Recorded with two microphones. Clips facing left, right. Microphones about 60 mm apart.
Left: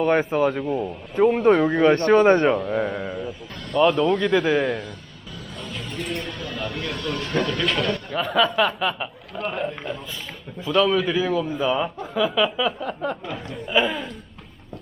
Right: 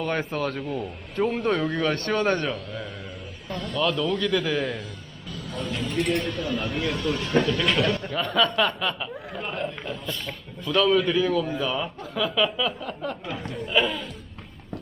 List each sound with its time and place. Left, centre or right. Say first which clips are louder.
0.0 s a man's voice: left 7 dB; centre
2.7 s speech: left 11 dB; left
3.8 s a man's voice: left 7 dB; left
5.5 s a sound: right 5 dB; centre
6.0 s speech: right 5 dB; right
6.7 s speech: right 1 dB; centre
13.5 s speech: left 2 dB; centre